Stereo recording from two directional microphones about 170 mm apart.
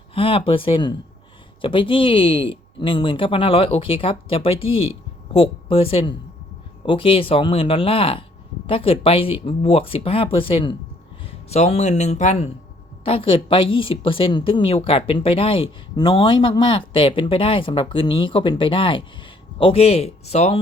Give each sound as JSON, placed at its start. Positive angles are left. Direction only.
{"t": 0.1, "sound": "speech", "side_deg": 35}
{"t": 13.1, "sound": "speech", "side_deg": 30}